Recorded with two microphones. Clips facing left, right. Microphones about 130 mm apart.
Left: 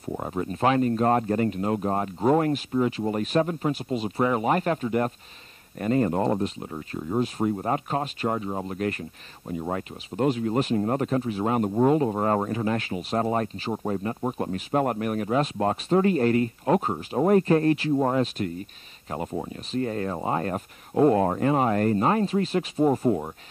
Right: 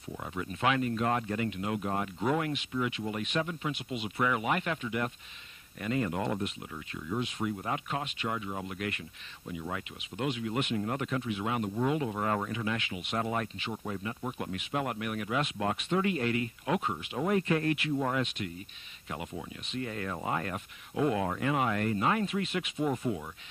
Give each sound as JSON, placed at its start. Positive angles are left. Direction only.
{"t": 0.1, "sound": "speech", "side_deg": 40}